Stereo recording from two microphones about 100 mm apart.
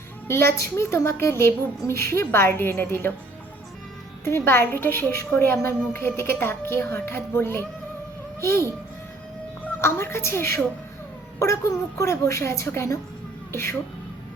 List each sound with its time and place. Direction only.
0.3 s a woman's voice: 25° left (ahead or behind)
4.2 s a woman's voice: 25° left (ahead or behind)
9.8 s a woman's voice: 25° left (ahead or behind)